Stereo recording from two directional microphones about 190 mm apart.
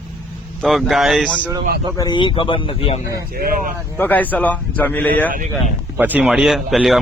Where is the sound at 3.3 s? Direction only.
50° right (ahead or behind).